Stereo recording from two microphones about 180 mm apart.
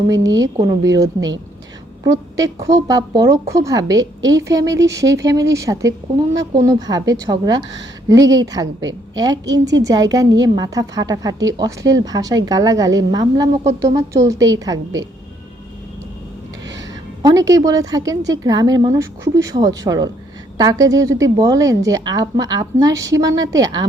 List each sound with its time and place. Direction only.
0.3 s a woman's voice: 20° right (ahead or behind)
17.2 s a woman's voice: 20° right (ahead or behind)